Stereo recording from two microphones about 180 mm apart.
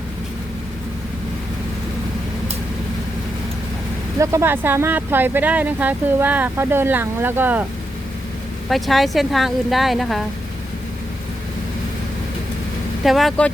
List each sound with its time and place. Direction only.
4.2 s speech: 15° right (ahead or behind)
8.7 s a woman's voice: centre (ahead or behind)
13.1 s a woman's voice: centre (ahead or behind)